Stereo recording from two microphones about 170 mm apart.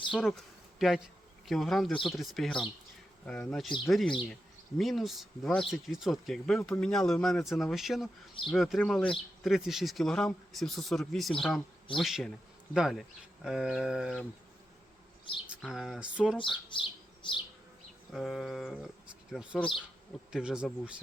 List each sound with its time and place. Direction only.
0.1 s speech: 5° right (ahead or behind)
15.4 s speech: centre (ahead or behind)
16.7 s bird: 30° left (ahead or behind)
18.1 s speech: centre (ahead or behind)